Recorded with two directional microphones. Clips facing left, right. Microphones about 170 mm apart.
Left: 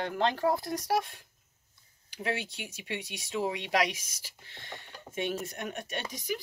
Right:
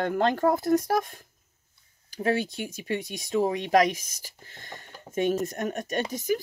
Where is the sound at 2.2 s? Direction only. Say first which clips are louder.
Right 8 dB; 40° right (ahead or behind).